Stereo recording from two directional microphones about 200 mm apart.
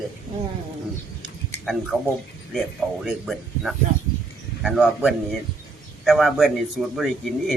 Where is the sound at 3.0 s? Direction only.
Centre (ahead or behind).